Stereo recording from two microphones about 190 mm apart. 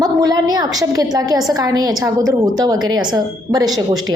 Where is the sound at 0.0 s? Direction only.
20° right (ahead or behind).